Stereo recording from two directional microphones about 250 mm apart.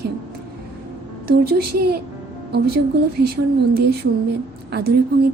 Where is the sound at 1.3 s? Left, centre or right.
Right.